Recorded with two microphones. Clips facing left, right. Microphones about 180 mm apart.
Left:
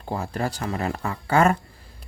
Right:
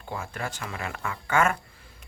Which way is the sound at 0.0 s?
35° left (ahead or behind).